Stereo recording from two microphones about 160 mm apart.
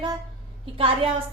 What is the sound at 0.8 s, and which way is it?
Speech, 35° right (ahead or behind).